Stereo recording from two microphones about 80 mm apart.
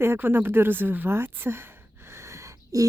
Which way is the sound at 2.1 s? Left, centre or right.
Right.